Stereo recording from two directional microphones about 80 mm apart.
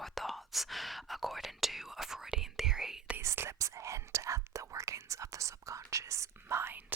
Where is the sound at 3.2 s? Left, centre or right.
Right.